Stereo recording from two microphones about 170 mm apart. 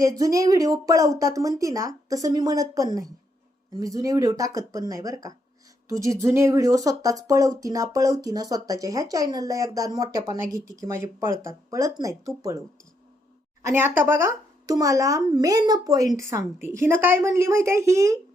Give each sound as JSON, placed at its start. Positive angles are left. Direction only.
{"t": 0.0, "sound": "speech", "side_deg": -20}